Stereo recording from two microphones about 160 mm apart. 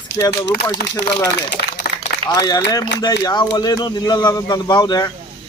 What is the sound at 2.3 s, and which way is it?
Speech, 25° left (ahead or behind).